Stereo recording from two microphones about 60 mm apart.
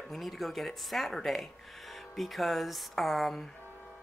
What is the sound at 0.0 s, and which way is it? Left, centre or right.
Speech, centre.